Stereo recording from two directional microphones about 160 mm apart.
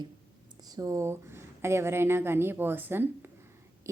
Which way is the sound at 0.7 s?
20° right (ahead or behind).